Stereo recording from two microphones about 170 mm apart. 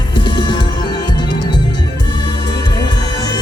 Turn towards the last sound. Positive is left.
turn(degrees=25)  # may be behind; listen again after turning